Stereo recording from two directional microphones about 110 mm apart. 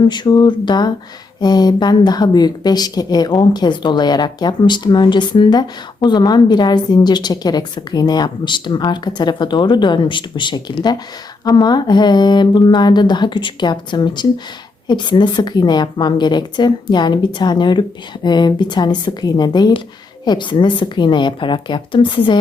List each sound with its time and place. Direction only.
0.1 s speech: 45° left (ahead or behind)